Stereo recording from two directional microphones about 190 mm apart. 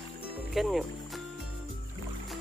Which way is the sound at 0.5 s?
Centre (ahead or behind).